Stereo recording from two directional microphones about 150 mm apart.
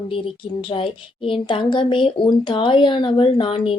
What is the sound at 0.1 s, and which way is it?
A woman's voice, 35° left (ahead or behind).